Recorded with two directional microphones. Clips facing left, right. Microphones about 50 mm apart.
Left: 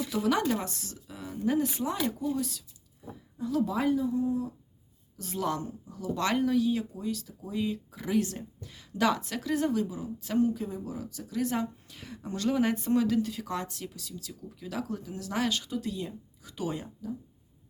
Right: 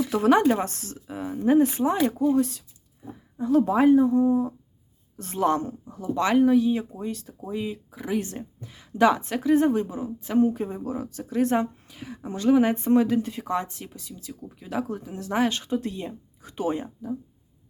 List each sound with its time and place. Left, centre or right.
0.1 s a woman's voice: right
5.1 s a woman's voice: right
5.9 s speech: right
6.9 s a woman's voice: right
7.5 s speech: centre
8.2 s a woman's voice: right
11.9 s speech: centre; by 17.2 s right